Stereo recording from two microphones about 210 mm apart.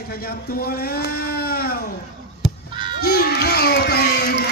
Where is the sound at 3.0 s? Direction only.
50° left (ahead or behind).